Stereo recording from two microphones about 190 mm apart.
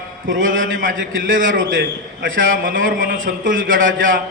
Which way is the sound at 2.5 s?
45° right (ahead or behind).